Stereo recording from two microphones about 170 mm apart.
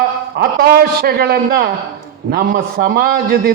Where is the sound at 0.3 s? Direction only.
65° right (ahead or behind).